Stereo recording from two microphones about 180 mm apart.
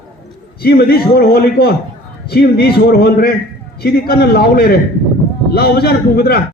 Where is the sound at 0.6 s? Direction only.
60° left (ahead or behind).